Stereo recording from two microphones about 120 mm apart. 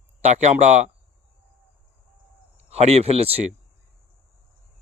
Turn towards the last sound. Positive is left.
turn(degrees=-60)  # may be behind; listen again after turning